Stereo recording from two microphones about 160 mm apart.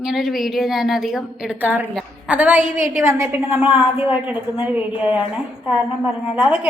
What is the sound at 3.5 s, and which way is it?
A woman's voice, 5° right (ahead or behind).